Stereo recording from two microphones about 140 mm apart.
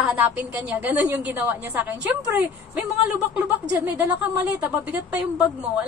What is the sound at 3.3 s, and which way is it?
Speech, 10° right (ahead or behind).